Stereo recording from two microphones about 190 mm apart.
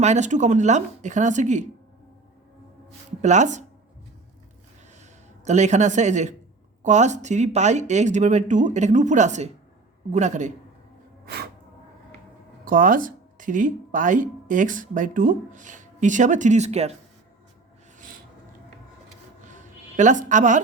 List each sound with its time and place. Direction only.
0.0 s speech: 40° right (ahead or behind)
3.2 s speech: 40° right (ahead or behind)
5.5 s speech: 40° right (ahead or behind)
12.6 s speech: 45° right (ahead or behind)
19.5 s a sound: 40° right (ahead or behind)